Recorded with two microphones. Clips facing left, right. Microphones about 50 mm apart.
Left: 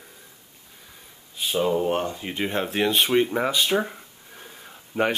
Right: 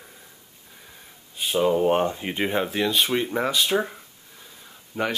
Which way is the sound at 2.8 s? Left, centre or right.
Centre.